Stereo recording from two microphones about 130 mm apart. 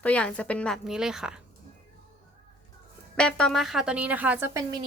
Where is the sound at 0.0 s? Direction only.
10° left (ahead or behind).